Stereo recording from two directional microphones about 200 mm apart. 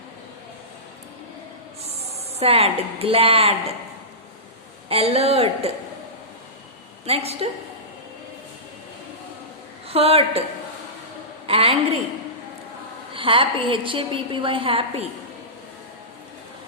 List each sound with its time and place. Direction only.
2.4 s a woman's voice: 30° right (ahead or behind)
4.9 s a woman's voice: 30° right (ahead or behind)
7.0 s a woman's voice: 30° right (ahead or behind)
9.9 s a woman's voice: 30° right (ahead or behind)
11.4 s a woman's voice: 30° right (ahead or behind)
13.1 s a woman's voice: 25° right (ahead or behind)